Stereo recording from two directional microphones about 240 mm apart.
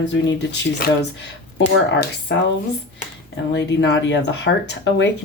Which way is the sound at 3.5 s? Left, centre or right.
Left.